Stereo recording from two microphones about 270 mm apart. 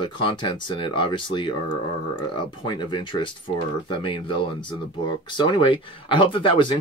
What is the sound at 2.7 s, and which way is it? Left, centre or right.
Speech, centre.